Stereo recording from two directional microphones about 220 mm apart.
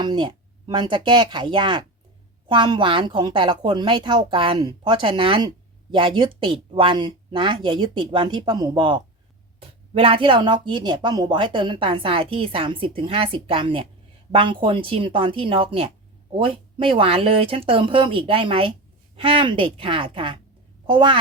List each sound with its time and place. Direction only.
0.0 s a woman's voice: 20° right (ahead or behind)